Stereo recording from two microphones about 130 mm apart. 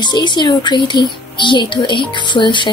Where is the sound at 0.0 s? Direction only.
35° left (ahead or behind).